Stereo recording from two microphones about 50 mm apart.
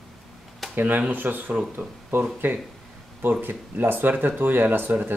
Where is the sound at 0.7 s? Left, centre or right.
Right.